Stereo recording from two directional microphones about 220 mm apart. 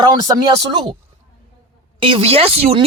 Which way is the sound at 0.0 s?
20° right (ahead or behind).